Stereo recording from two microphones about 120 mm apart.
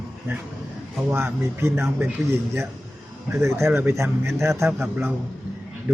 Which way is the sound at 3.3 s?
20° right (ahead or behind).